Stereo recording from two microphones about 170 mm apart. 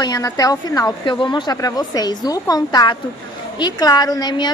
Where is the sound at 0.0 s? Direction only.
20° left (ahead or behind).